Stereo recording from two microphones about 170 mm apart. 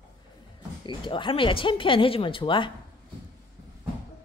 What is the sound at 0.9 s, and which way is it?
Speech, 30° left (ahead or behind).